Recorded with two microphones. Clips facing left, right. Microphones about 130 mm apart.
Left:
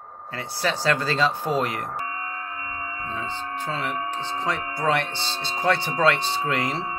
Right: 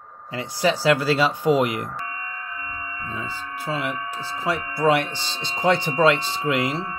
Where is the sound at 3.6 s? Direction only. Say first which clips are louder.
Right 2 dB; 10° right (ahead or behind).